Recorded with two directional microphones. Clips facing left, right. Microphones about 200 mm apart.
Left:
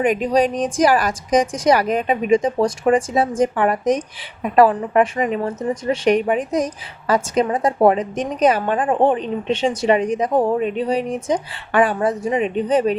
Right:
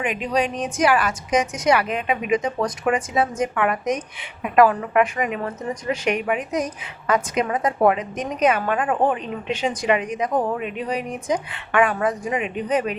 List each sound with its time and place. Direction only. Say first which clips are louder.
0.0 s a woman's voice: left 6 dB; 40° left (ahead or behind)